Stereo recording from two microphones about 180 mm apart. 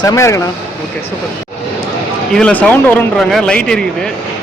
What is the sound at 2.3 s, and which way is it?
Speech, 5° left (ahead or behind).